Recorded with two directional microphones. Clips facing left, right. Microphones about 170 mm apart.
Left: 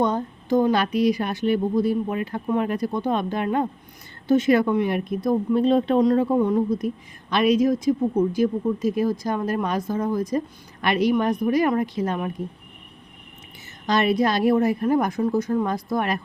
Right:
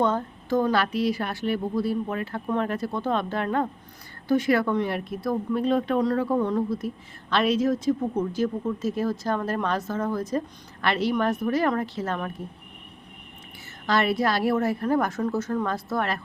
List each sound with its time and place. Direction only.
0.0 s speech: 15° left (ahead or behind)
13.8 s speech: 20° left (ahead or behind)